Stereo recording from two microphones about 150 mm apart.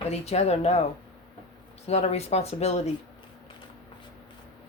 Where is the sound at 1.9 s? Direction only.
45° left (ahead or behind).